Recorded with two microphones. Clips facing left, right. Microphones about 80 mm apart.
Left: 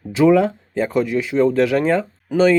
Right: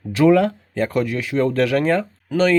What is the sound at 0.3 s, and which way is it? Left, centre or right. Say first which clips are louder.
Speech: even; centre.